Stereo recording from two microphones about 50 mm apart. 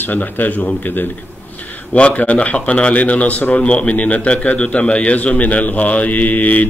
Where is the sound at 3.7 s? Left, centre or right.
Left.